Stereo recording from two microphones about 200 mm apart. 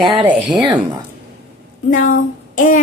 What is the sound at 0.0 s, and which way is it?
Speech, 25° right (ahead or behind).